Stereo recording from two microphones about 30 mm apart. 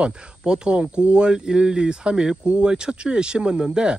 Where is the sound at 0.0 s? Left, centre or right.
Right.